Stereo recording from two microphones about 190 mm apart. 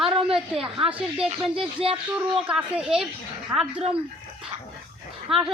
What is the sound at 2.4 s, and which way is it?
Speech, 5° right (ahead or behind).